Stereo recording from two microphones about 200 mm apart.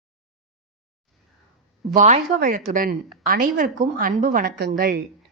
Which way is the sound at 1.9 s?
40° right (ahead or behind).